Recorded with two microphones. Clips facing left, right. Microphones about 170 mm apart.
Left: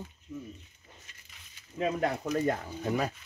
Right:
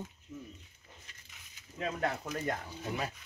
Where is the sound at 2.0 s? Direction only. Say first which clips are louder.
Left 5 dB; 35° left (ahead or behind).